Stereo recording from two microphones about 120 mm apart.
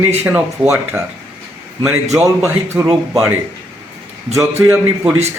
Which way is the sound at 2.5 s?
20° right (ahead or behind).